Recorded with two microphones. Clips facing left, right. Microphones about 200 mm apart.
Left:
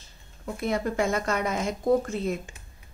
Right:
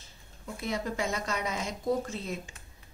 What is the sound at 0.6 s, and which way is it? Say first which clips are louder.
A woman's voice: left 6 dB; 55° left (ahead or behind).